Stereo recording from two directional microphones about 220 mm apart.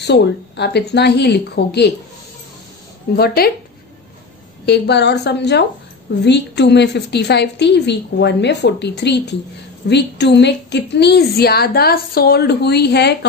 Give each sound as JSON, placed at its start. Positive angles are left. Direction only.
{"t": 0.0, "sound": "a woman's voice", "side_deg": 50}
{"t": 3.2, "sound": "a woman's voice", "side_deg": 45}
{"t": 4.6, "sound": "a woman's voice", "side_deg": 50}